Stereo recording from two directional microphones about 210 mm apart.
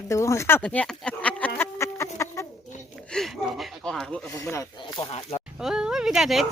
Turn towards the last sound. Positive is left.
turn(degrees=0)  # may be behind; listen again after turning